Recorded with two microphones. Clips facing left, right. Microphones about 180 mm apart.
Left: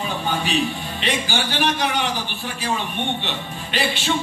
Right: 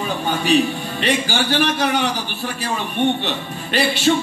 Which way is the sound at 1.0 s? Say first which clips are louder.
Right 4 dB; 40° right (ahead or behind).